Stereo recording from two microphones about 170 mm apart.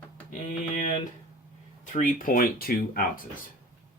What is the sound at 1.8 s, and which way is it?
Speech, 50° left (ahead or behind).